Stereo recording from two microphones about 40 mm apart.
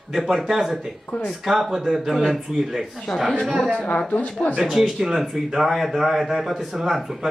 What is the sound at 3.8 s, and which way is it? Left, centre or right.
Speech, left.